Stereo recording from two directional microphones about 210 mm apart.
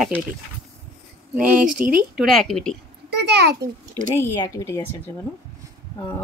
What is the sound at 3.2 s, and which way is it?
Speech, 50° right (ahead or behind).